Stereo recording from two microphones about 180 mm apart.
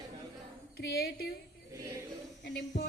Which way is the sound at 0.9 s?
60° left (ahead or behind).